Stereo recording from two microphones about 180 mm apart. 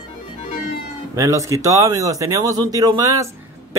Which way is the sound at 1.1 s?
15° right (ahead or behind).